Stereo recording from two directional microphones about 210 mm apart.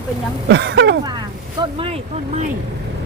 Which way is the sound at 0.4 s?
55° right (ahead or behind).